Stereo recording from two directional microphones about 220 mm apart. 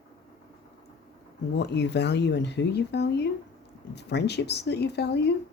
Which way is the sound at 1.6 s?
50° left (ahead or behind).